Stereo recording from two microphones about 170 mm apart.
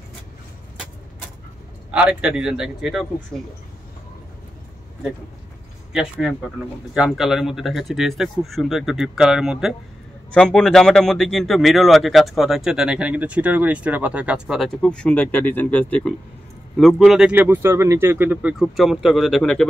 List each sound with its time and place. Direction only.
1.9 s speech: 5° right (ahead or behind)
5.9 s speech: centre (ahead or behind)